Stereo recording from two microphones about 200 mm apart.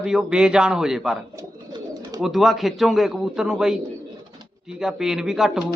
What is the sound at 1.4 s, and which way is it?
Bird, 15° right (ahead or behind).